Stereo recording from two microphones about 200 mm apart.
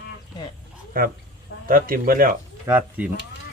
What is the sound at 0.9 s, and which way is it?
A man's voice, 45° right (ahead or behind).